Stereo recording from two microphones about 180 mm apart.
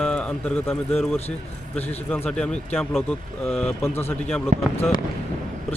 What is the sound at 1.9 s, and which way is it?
Speech, 10° left (ahead or behind).